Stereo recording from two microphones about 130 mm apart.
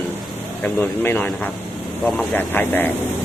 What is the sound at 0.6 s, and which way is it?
Speech, 15° left (ahead or behind).